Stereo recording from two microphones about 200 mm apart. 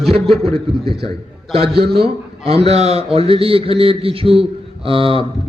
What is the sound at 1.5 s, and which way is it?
A man's voice, 30° right (ahead or behind).